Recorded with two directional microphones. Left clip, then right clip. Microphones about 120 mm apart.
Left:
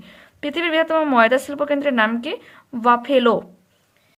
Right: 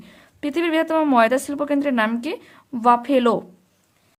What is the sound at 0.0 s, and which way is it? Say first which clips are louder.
A woman's voice: left 1 dB; 45° right (ahead or behind).